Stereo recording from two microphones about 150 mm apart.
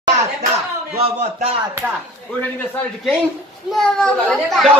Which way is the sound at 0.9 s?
40° right (ahead or behind).